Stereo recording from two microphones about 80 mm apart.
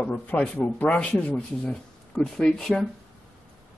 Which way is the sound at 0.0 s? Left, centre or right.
Centre.